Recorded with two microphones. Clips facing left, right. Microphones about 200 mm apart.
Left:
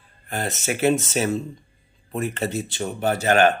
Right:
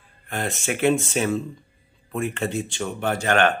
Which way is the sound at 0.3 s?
40° left (ahead or behind).